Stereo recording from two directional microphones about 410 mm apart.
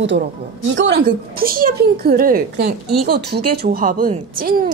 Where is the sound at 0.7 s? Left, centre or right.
Right.